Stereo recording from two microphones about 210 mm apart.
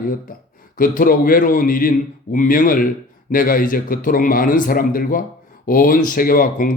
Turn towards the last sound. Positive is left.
turn(degrees=40)  # may be behind; listen again after turning